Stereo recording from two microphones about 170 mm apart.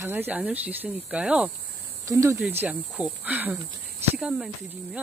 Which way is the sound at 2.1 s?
15° right (ahead or behind).